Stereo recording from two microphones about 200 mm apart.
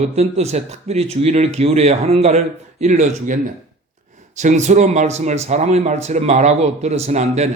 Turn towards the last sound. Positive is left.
turn(degrees=-35)  # may be behind; listen again after turning